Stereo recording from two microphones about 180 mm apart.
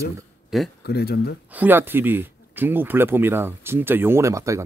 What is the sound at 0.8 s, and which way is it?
Speech, 60° left (ahead or behind).